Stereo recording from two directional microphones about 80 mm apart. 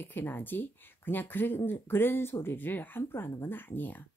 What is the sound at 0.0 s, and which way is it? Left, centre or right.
Speech, left.